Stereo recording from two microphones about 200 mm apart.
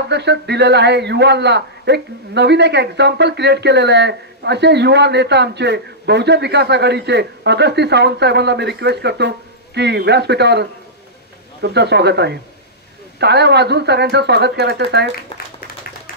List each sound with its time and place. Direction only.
0.1 s a man's voice: 60° right (ahead or behind)